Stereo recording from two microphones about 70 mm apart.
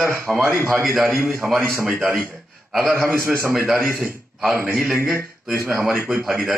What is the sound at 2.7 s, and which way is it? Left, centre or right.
Speech, centre.